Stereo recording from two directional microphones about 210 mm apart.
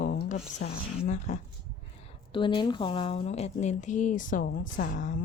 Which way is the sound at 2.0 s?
25° left (ahead or behind).